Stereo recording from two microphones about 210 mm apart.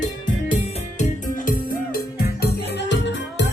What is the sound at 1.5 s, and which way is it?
Music, 45° left (ahead or behind).